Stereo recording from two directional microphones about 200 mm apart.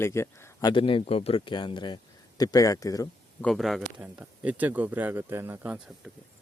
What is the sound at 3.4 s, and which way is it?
Speech, centre (ahead or behind).